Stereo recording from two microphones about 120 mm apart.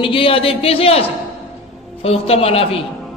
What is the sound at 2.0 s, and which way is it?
Speech, 55° left (ahead or behind).